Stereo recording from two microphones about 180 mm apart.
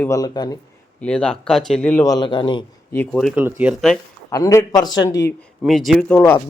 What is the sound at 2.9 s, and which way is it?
Speech, 5° left (ahead or behind).